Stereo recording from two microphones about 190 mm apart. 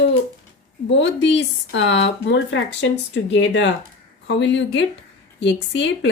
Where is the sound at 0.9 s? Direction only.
70° left (ahead or behind).